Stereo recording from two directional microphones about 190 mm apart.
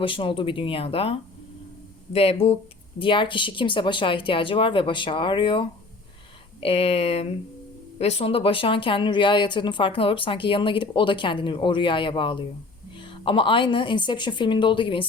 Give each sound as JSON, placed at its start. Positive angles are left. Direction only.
{"t": 0.0, "sound": "speech", "side_deg": 25}
{"t": 2.1, "sound": "speech", "side_deg": 30}